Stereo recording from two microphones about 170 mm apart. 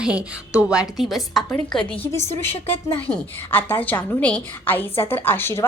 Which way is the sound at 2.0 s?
15° left (ahead or behind).